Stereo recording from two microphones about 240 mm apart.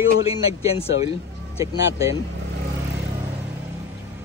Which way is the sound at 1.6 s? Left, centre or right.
Centre.